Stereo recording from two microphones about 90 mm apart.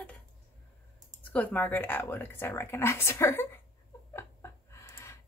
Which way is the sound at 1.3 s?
20° left (ahead or behind).